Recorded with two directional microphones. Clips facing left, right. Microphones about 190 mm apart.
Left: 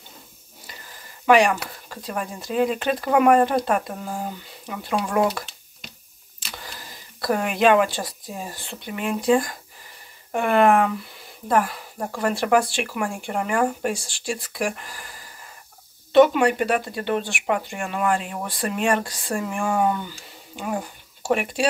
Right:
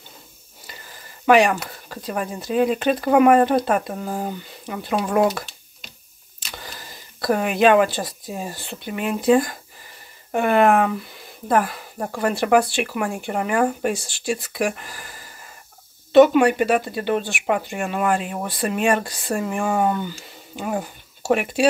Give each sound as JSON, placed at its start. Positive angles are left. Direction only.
{"t": 1.2, "sound": "speech", "side_deg": 0}
{"t": 6.5, "sound": "speech", "side_deg": 0}